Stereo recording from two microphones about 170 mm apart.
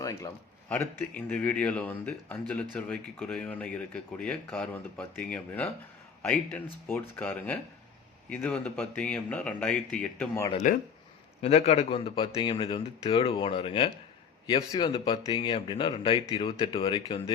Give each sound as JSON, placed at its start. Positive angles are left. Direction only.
{"t": 0.0, "sound": "a sound", "side_deg": 20}
{"t": 0.7, "sound": "a man's voice", "side_deg": 10}
{"t": 10.6, "sound": "speech", "side_deg": 50}
{"t": 11.4, "sound": "a man's voice", "side_deg": 35}